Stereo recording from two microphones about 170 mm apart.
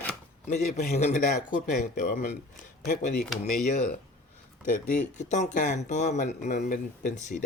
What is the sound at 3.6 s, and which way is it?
Speech, 45° left (ahead or behind).